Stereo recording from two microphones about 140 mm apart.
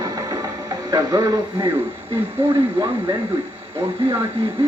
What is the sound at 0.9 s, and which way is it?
Speech, 25° right (ahead or behind).